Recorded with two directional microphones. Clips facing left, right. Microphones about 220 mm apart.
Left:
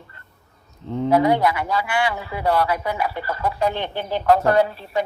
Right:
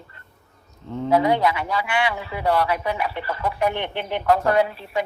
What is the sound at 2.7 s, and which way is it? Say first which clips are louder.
Speech: left 1 dB; 20° right (ahead or behind).